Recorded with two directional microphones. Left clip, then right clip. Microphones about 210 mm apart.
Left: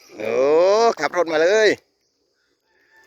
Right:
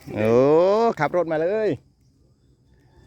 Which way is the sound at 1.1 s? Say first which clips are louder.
Left 5 dB; 5° left (ahead or behind).